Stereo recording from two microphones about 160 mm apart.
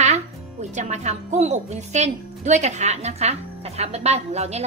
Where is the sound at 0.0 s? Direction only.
45° right (ahead or behind).